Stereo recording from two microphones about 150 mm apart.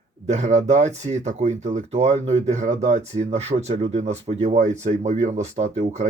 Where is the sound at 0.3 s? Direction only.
50° right (ahead or behind).